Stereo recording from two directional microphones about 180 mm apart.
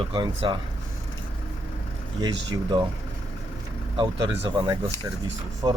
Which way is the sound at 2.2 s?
25° right (ahead or behind).